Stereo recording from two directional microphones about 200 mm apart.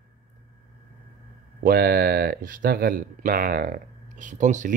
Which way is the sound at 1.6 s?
50° right (ahead or behind).